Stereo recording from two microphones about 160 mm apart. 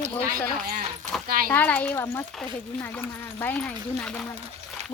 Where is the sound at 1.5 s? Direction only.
10° left (ahead or behind).